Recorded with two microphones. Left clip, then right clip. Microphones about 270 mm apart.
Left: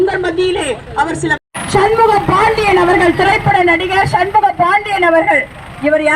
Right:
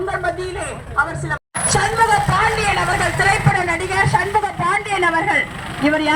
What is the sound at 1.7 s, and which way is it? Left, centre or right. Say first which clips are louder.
A woman's voice: left 6 dB; left.